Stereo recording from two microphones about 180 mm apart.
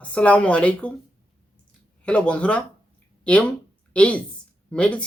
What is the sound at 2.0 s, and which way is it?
Speech, 5° left (ahead or behind).